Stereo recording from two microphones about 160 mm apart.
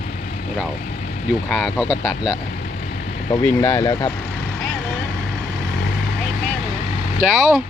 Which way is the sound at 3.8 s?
25° left (ahead or behind).